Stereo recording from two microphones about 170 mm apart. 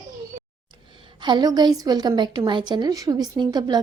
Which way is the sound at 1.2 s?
25° right (ahead or behind).